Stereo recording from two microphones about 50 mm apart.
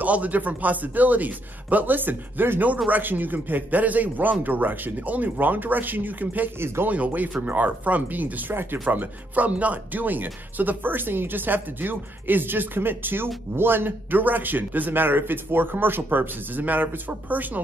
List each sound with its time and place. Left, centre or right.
0.0 s speech: right
6.6 s speech: right
6.9 s speech: right